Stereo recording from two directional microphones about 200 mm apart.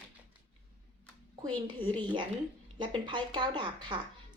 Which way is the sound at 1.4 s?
25° right (ahead or behind).